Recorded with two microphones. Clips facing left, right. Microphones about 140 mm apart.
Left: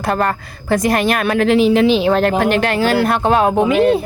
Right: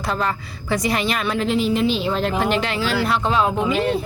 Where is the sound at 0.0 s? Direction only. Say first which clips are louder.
Left 6 dB; 55° left (ahead or behind).